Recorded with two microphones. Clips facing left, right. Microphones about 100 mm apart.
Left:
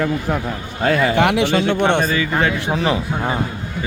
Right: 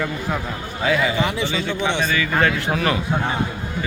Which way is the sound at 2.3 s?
15° left (ahead or behind).